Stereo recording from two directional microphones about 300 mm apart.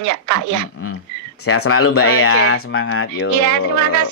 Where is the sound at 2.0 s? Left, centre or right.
Left.